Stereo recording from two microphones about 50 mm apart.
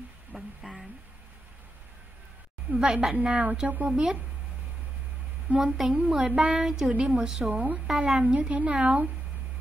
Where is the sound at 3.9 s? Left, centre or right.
Centre.